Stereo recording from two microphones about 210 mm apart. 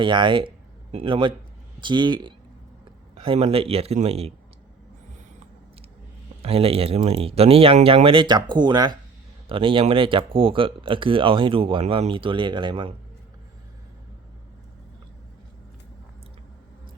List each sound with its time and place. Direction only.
0.0 s speech: 20° right (ahead or behind)
6.4 s speech: 30° right (ahead or behind)